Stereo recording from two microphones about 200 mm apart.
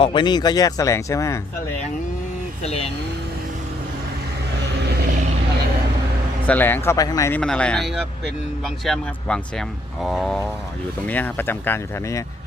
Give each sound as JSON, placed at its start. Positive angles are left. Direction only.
{"t": 0.0, "sound": "speech", "side_deg": 25}
{"t": 2.6, "sound": "speech", "side_deg": 30}
{"t": 6.5, "sound": "speech", "side_deg": 10}